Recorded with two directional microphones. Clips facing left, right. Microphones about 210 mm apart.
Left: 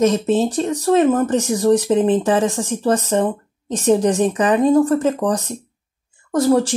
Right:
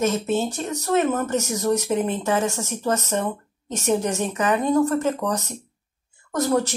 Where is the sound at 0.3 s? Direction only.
35° left (ahead or behind).